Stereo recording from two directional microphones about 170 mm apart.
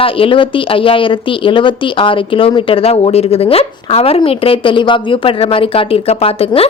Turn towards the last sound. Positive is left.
turn(degrees=35)  # may be behind; listen again after turning